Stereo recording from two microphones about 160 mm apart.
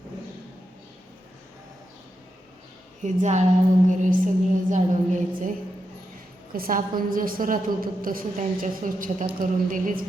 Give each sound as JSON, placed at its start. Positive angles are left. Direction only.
{"t": 3.0, "sound": "a woman's voice", "side_deg": -50}
{"t": 6.5, "sound": "a woman's voice", "side_deg": -60}